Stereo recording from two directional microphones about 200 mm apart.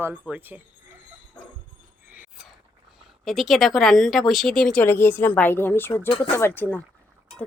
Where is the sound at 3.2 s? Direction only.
Centre (ahead or behind).